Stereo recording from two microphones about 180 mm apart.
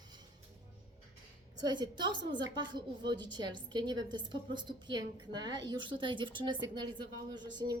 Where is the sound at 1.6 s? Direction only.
25° right (ahead or behind).